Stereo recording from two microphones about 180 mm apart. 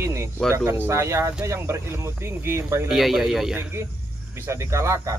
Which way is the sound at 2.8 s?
Centre (ahead or behind).